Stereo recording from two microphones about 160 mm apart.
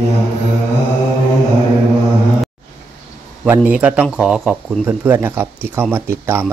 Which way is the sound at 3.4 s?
10° right (ahead or behind).